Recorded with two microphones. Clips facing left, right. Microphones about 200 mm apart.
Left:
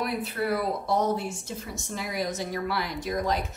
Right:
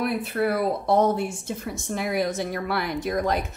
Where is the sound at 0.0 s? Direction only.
55° right (ahead or behind).